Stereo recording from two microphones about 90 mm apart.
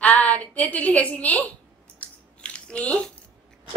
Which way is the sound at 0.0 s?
15° left (ahead or behind).